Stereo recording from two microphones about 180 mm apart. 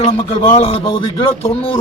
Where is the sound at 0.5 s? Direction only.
35° left (ahead or behind).